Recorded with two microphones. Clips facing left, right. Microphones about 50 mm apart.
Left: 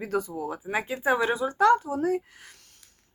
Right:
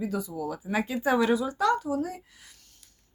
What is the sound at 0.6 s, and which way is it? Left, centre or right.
Speech, left.